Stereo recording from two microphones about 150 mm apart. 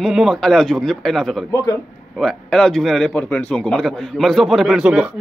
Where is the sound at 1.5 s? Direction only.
25° left (ahead or behind).